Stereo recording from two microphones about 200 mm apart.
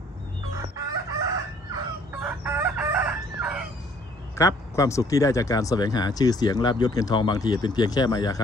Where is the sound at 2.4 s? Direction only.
10° right (ahead or behind).